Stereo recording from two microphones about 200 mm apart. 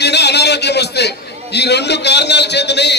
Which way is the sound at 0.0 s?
55° left (ahead or behind).